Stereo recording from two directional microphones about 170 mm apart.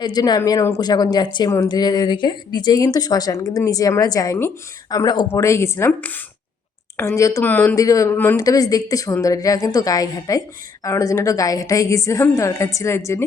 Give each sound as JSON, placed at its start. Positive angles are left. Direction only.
{"t": 0.0, "sound": "a woman's voice", "side_deg": 25}
{"t": 7.2, "sound": "a woman's voice", "side_deg": 20}